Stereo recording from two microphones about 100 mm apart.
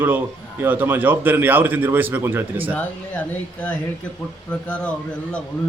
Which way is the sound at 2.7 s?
15° left (ahead or behind).